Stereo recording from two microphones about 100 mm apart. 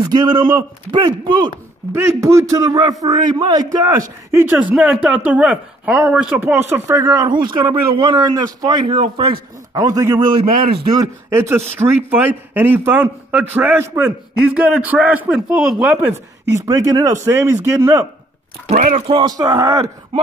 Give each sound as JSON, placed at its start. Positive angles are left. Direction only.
{"t": 0.0, "sound": "speech", "side_deg": -45}
{"t": 1.9, "sound": "a man's voice", "side_deg": -25}
{"t": 4.4, "sound": "speech", "side_deg": -15}
{"t": 8.8, "sound": "speech", "side_deg": -70}
{"t": 9.8, "sound": "a man's voice", "side_deg": -35}
{"t": 10.4, "sound": "speech", "side_deg": -60}
{"t": 11.0, "sound": "a man's voice", "side_deg": -30}
{"t": 16.5, "sound": "speech", "side_deg": -35}
{"t": 19.2, "sound": "a man's voice", "side_deg": -40}